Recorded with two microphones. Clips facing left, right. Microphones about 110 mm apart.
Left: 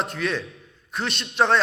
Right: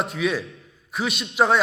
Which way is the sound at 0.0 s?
5° right (ahead or behind).